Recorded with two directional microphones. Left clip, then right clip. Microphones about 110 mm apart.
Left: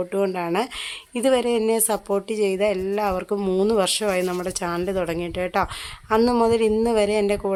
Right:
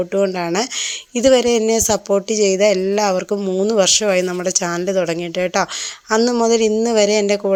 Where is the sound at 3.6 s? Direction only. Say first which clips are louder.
Right 9 dB; 20° right (ahead or behind).